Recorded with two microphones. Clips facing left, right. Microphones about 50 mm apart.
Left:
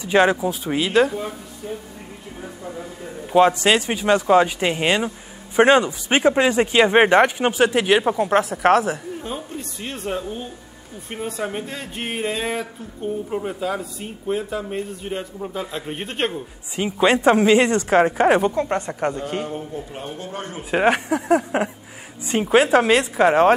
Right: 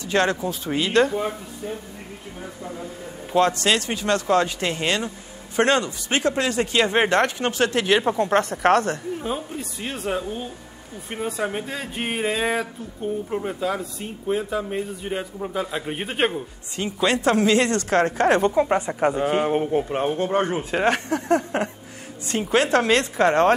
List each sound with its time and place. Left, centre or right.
0.0 s speech: centre
1.1 s speech: centre
3.3 s speech: centre
9.2 s speech: centre
16.7 s speech: centre
18.5 s speech: centre
19.1 s speech: right
19.4 s a man's voice: right
20.7 s speech: centre